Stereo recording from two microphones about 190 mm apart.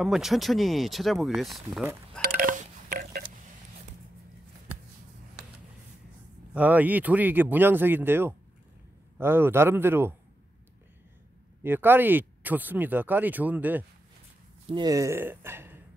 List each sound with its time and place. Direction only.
0.0 s speech: centre (ahead or behind)
2.2 s a sound: 50° right (ahead or behind)
6.5 s speech: 10° right (ahead or behind)
11.6 s speech: 10° right (ahead or behind)
14.7 s speech: 20° right (ahead or behind)